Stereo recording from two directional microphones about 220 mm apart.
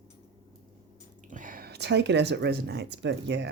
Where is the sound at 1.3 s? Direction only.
35° right (ahead or behind); by 3.5 s 55° right (ahead or behind).